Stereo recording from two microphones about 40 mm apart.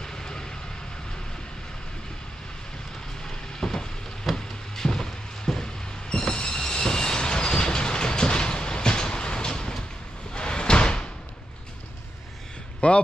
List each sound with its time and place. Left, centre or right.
0.0 s vehicle: centre
3.3 s a sound: centre
6.1 s train: centre
10.3 s door: left
12.8 s speech: left